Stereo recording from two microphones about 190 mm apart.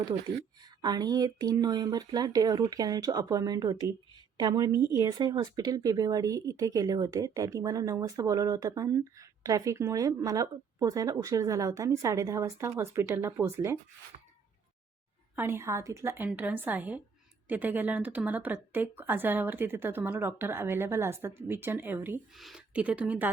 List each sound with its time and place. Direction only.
0.6 s speech: 20° right (ahead or behind)
15.4 s speech: 10° right (ahead or behind)